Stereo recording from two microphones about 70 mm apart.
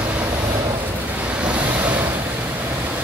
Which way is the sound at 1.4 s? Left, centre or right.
Centre.